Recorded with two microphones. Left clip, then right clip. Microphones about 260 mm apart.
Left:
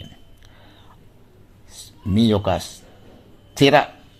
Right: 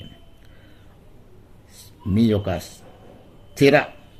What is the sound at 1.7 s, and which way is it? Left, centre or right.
A man's voice, centre.